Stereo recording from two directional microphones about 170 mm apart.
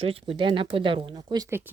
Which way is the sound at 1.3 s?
20° right (ahead or behind).